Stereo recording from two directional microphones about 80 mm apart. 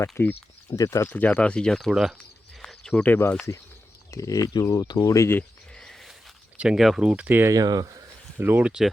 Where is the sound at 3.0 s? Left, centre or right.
Left.